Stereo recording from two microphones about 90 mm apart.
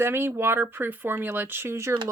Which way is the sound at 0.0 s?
25° right (ahead or behind).